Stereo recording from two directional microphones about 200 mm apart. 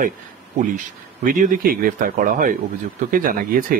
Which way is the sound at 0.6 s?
40° right (ahead or behind).